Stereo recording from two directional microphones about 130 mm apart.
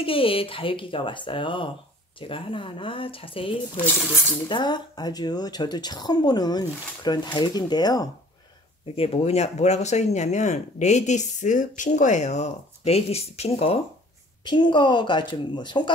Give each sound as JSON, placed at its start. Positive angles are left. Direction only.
{"t": 0.0, "sound": "speech", "side_deg": 45}
{"t": 8.9, "sound": "speech", "side_deg": 50}
{"t": 14.4, "sound": "speech", "side_deg": 35}